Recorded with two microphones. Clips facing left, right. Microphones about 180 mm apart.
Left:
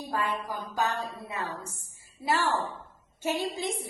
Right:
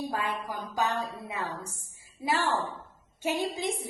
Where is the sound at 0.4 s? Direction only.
15° right (ahead or behind).